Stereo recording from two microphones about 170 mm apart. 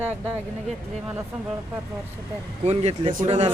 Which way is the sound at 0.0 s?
10° right (ahead or behind).